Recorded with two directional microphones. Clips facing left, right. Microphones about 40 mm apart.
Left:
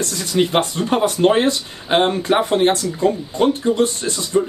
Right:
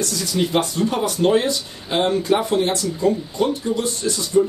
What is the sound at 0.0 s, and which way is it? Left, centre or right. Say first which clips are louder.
Speech: left 3 dB; left.